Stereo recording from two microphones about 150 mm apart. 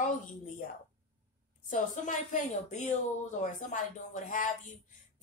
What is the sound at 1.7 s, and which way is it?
A woman's voice, 60° left (ahead or behind).